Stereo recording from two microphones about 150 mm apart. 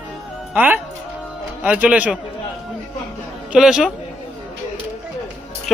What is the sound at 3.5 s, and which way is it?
Speech, 5° right (ahead or behind).